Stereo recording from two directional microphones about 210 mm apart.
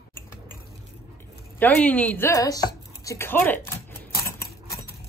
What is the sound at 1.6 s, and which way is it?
Speech, 5° left (ahead or behind).